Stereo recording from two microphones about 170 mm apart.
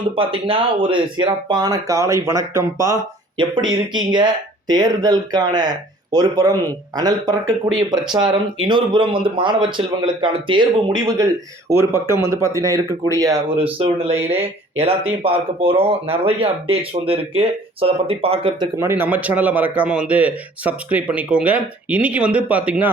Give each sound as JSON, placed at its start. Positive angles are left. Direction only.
{"t": 0.2, "sound": "a man's voice", "side_deg": -30}
{"t": 14.3, "sound": "speech", "side_deg": -35}
{"t": 18.8, "sound": "a man's voice", "side_deg": -15}